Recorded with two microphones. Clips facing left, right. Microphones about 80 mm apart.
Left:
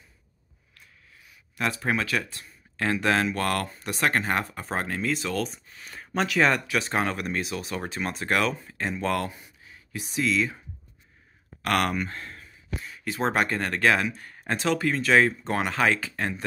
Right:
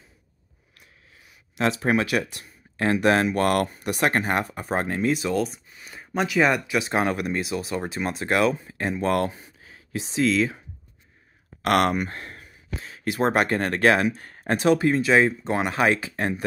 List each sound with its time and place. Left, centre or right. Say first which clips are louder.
1.2 s a sound: right 5 dB; right
1.8 s speech: right 3 dB; right; by 6.9 s centre
6.9 s speech: right 3 dB; centre
8.6 s speech: right 3 dB; right
11.6 s speech: right 4 dB; right
13.3 s speech: right 2 dB; right
14.6 s speech: right 6 dB; right
15.7 s speech: right 2 dB; right